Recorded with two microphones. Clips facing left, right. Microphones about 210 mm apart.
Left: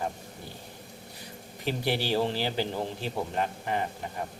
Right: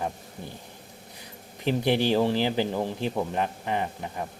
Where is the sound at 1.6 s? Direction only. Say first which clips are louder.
Right 6 dB; 15° right (ahead or behind).